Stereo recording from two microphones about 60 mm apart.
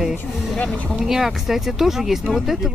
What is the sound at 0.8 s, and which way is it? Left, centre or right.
Speech, centre.